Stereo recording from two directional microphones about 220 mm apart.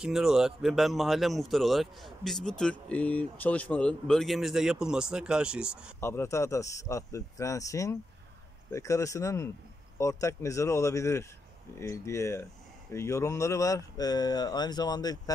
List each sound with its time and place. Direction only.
0.0 s speech: 5° right (ahead or behind)
5.9 s speech: 10° left (ahead or behind)